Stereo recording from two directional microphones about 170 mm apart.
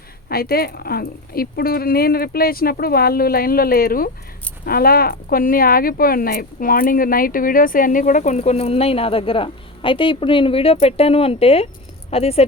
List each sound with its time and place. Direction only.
0.3 s speech: 65° left (ahead or behind); by 12.5 s 35° left (ahead or behind)